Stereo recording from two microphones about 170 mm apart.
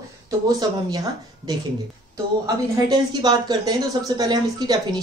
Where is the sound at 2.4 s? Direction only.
25° right (ahead or behind).